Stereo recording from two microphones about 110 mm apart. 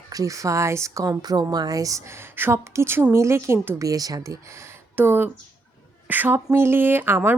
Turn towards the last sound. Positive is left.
turn(degrees=-20)  # may be behind; listen again after turning